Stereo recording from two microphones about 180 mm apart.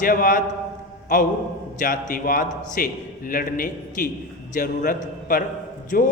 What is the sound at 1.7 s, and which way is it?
A man's voice, 50° left (ahead or behind).